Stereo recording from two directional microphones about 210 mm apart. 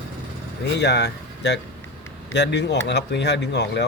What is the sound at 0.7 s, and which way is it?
Speech, 55° left (ahead or behind).